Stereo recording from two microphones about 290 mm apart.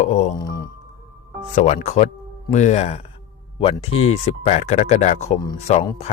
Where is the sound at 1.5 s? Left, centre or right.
Left.